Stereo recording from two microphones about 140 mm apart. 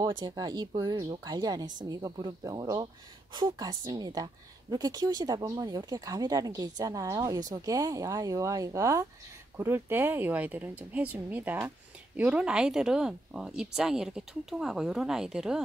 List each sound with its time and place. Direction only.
0.0 s a woman's voice: 30° right (ahead or behind); by 15.6 s 5° right (ahead or behind)